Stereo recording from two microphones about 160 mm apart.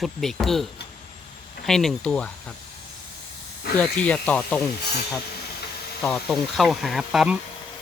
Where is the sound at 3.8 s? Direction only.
10° left (ahead or behind).